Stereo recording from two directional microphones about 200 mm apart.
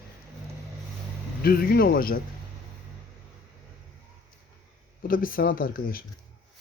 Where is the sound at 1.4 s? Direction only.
50° left (ahead or behind).